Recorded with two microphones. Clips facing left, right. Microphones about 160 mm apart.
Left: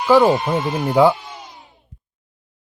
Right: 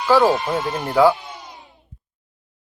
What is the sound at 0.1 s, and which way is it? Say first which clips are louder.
Speech: left 2 dB; 20° left (ahead or behind).